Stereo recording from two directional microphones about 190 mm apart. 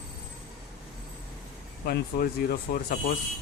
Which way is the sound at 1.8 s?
55° left (ahead or behind).